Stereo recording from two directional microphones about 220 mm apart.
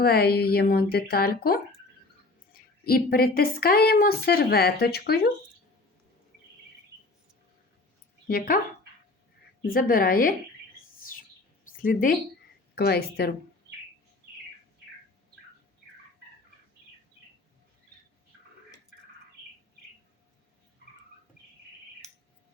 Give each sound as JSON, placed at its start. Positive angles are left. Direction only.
{"t": 0.0, "sound": "a woman's voice", "side_deg": 45}
{"t": 8.3, "sound": "a woman's voice", "side_deg": 40}
{"t": 9.6, "sound": "a woman's voice", "side_deg": 40}
{"t": 11.8, "sound": "a woman's voice", "side_deg": 40}